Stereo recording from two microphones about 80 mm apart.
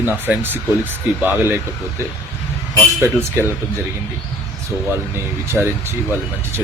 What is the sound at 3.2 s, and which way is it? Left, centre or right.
Speech, right.